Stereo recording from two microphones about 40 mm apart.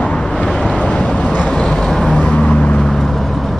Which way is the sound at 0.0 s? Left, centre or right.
Left.